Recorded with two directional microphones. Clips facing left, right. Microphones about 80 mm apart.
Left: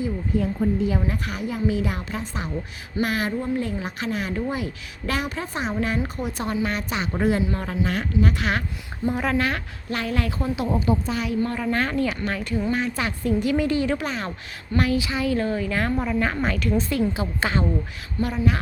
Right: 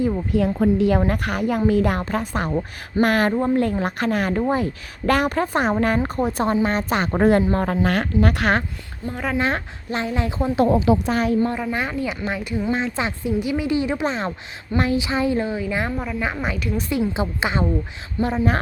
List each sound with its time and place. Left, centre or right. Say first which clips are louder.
0.3 s a woman's voice: right 3 dB; right
6.9 s a woman's voice: right 6 dB; right
9.0 s speech: left 5 dB; left
9.4 s a woman's voice: right 3 dB; right
10.7 s a woman's voice: right 5 dB; right
11.1 s a woman's voice: right 6 dB; right
11.3 s a woman's voice: right 4 dB; right
11.6 s a woman's voice: left 1 dB; centre
13.4 s a woman's voice: even; centre
15.4 s speech: even; centre
16.0 s speech: left 2 dB; centre
17.2 s a woman's voice: right 2 dB; right